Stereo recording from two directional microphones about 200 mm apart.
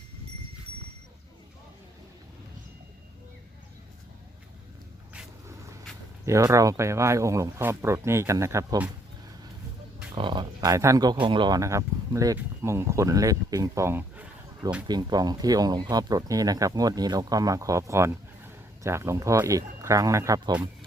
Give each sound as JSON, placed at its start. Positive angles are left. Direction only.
{"t": 6.2, "sound": "speech", "side_deg": -15}
{"t": 10.2, "sound": "speech", "side_deg": -25}
{"t": 14.8, "sound": "speech", "side_deg": -20}